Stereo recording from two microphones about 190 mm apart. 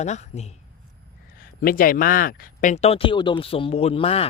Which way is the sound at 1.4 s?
50° left (ahead or behind).